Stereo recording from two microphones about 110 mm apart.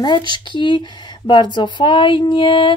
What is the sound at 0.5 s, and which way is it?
Speech, 45° left (ahead or behind).